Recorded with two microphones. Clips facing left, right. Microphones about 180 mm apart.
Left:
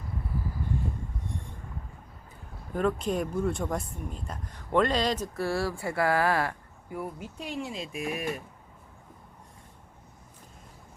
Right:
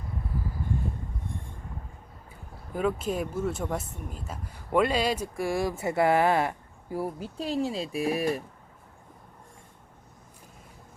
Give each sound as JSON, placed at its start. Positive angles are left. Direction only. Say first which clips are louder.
{"t": 2.7, "sound": "speech", "louder": "even", "side_deg": -5}
{"t": 6.9, "sound": "speech", "louder": "right 4 dB", "side_deg": -30}